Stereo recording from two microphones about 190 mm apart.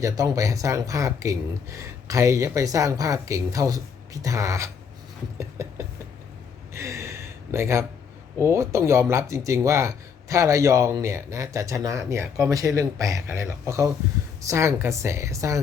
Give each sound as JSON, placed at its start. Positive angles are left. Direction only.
{"t": 0.0, "sound": "speech", "side_deg": -15}
{"t": 5.4, "sound": "a sound", "side_deg": -15}
{"t": 8.4, "sound": "speech", "side_deg": -15}